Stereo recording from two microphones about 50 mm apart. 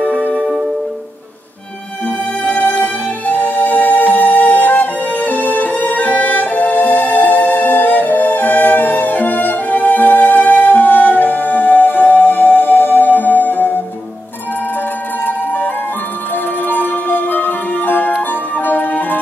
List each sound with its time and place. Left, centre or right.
2.0 s music: left
15.2 s music: left